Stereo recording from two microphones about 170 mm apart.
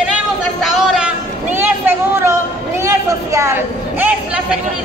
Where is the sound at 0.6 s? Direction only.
Centre (ahead or behind).